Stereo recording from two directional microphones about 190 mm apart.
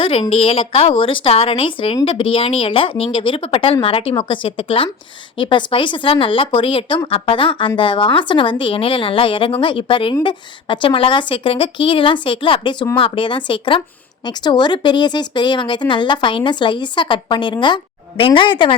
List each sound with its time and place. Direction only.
0.0 s a woman's voice: 30° left (ahead or behind)